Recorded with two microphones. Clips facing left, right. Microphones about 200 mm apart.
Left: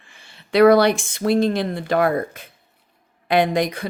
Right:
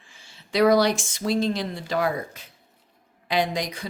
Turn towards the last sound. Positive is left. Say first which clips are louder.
# left 7 dB
turn(degrees=55)  # may be behind; listen again after turning